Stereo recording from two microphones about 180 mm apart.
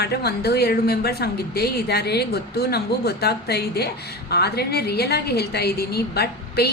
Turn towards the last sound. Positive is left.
turn(degrees=60)  # may be behind; listen again after turning